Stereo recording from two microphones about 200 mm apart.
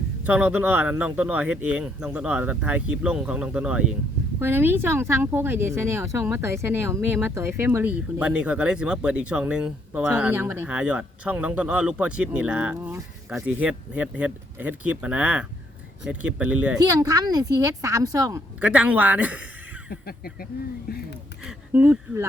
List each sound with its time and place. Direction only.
0.3 s speech: 5° right (ahead or behind)
16.8 s speech: 20° right (ahead or behind)
19.9 s speech: 50° left (ahead or behind)
21.4 s speech: 10° right (ahead or behind)